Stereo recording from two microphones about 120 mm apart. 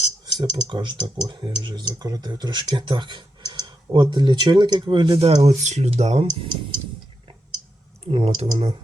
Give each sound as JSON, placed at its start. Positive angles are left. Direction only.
{"t": 0.3, "sound": "speech", "side_deg": -35}
{"t": 5.2, "sound": "speech", "side_deg": -65}
{"t": 8.0, "sound": "speech", "side_deg": -55}